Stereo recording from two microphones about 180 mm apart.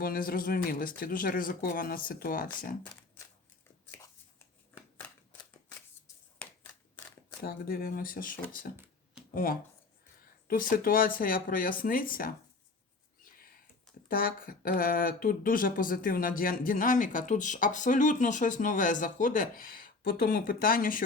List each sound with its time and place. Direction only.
0.0 s speech: 50° left (ahead or behind)
2.8 s shuffling cards: 20° left (ahead or behind)
7.4 s speech: 55° left (ahead or behind)
14.1 s speech: 50° left (ahead or behind)